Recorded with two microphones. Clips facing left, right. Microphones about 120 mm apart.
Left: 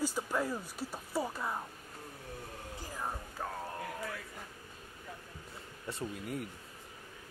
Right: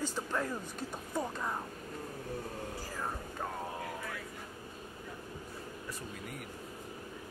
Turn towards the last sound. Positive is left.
turn(degrees=25)  # may be behind; listen again after turning